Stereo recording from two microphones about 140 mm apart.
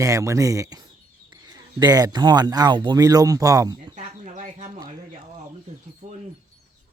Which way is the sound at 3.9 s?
60° right (ahead or behind).